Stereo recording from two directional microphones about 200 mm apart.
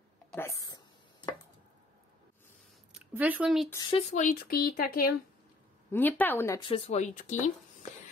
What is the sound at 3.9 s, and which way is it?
Speech, 35° left (ahead or behind).